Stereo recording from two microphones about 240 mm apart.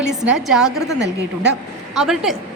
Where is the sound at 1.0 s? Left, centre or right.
Right.